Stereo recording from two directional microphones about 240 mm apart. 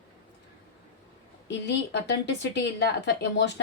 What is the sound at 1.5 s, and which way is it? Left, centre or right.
Speech, left.